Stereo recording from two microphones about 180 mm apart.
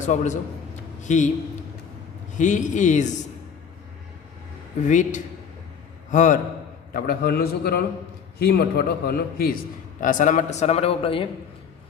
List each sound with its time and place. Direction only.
0.0 s a man's voice: 40° left (ahead or behind)
2.4 s speech: 45° left (ahead or behind)
4.9 s speech: 45° left (ahead or behind)
6.9 s a man's voice: 55° left (ahead or behind)
10.0 s a man's voice: 45° left (ahead or behind)